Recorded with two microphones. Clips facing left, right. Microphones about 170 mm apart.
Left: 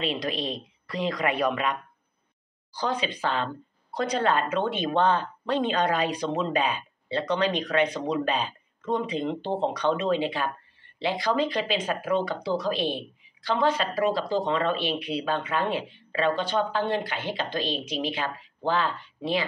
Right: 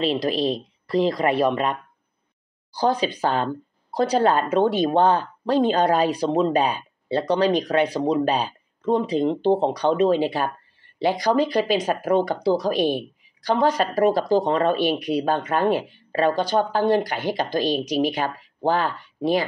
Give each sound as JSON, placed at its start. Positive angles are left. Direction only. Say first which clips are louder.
{"t": 0.0, "sound": "speech", "louder": "right 7 dB", "side_deg": -35}